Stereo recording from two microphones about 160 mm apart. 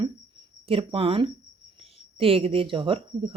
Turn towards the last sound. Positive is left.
turn(degrees=-35)  # may be behind; listen again after turning